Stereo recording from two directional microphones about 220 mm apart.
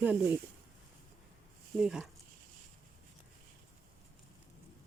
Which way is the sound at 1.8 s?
5° right (ahead or behind).